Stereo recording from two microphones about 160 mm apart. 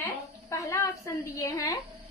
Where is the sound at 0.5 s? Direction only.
20° left (ahead or behind).